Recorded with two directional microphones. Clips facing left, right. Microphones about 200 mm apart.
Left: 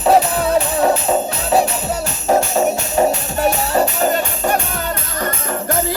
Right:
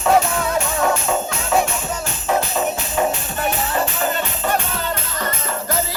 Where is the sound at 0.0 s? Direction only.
35° left (ahead or behind).